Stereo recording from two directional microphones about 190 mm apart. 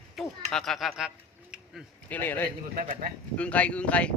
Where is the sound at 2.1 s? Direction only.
10° left (ahead or behind).